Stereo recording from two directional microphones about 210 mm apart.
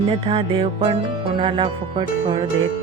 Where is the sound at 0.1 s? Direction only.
25° right (ahead or behind).